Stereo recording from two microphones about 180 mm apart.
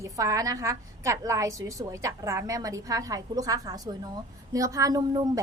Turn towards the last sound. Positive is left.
turn(degrees=-20)  # may be behind; listen again after turning